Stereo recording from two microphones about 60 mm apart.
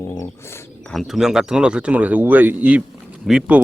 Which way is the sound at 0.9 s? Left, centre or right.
Centre.